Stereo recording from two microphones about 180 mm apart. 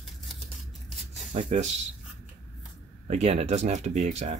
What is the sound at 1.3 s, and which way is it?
Speech, 40° right (ahead or behind).